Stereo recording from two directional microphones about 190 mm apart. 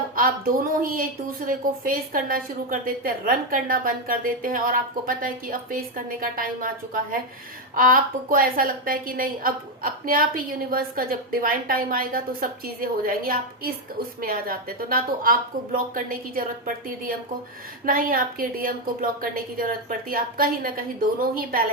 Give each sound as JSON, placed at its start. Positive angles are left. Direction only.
{"t": 0.2, "sound": "a woman's voice", "side_deg": -50}